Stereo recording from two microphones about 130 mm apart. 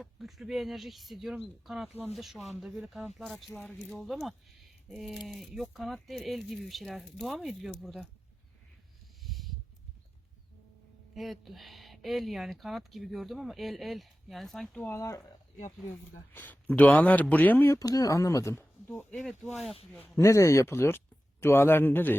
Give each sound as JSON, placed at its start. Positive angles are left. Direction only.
{"t": 0.0, "sound": "speech", "side_deg": 0}
{"t": 9.2, "sound": "a sound", "side_deg": 0}
{"t": 11.1, "sound": "speech", "side_deg": 0}
{"t": 14.8, "sound": "speech", "side_deg": 20}
{"t": 16.3, "sound": "speech", "side_deg": 15}
{"t": 19.1, "sound": "speech", "side_deg": 0}
{"t": 20.0, "sound": "speech", "side_deg": 20}